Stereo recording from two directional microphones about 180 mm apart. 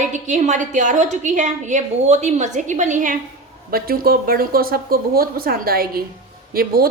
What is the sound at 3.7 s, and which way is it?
Speech, 55° right (ahead or behind).